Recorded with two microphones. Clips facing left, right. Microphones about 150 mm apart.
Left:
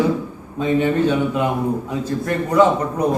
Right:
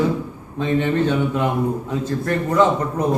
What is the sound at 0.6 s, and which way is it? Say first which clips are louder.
A man's voice: left 2 dB; 10° left (ahead or behind).